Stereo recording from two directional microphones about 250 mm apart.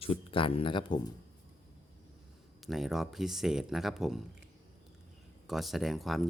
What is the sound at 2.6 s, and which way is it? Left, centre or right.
Speech, centre.